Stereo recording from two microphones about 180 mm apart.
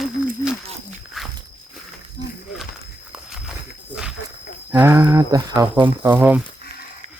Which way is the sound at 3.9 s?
5° right (ahead or behind).